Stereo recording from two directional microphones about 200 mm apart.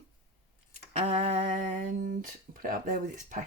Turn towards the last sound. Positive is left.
turn(degrees=-40)  # may be behind; listen again after turning